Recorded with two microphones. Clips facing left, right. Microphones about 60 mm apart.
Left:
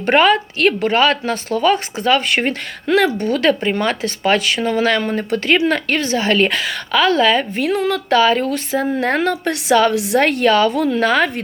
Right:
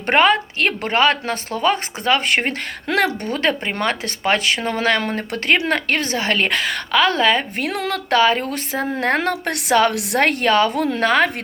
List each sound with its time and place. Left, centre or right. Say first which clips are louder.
0.1 s speech: left 2 dB; right
3.3 s speech: left 5 dB; right
4.9 s speech: left 4 dB; right
7.5 s speech: left 5 dB; right